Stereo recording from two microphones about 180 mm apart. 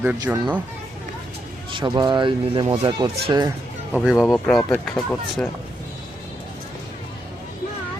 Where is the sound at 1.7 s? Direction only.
25° right (ahead or behind).